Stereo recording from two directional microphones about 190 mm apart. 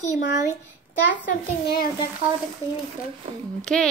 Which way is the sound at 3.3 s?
30° right (ahead or behind).